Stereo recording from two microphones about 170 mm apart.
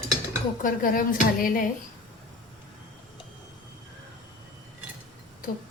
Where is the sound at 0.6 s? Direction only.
50° left (ahead or behind).